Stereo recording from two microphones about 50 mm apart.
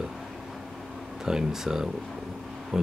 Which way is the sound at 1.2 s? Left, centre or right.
Centre.